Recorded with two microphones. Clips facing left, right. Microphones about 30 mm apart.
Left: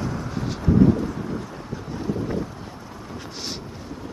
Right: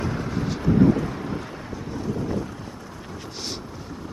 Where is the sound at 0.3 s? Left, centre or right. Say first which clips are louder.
Right 2 dB; centre.